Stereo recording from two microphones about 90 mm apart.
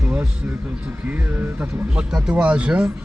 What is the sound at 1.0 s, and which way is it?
Speech, 20° right (ahead or behind).